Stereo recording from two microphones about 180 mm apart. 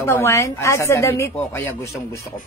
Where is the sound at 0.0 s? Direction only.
15° left (ahead or behind).